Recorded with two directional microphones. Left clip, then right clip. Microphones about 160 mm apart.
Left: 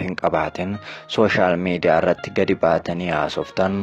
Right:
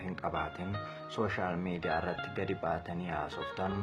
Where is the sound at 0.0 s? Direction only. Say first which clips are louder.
Left 15 dB; 60° left (ahead or behind).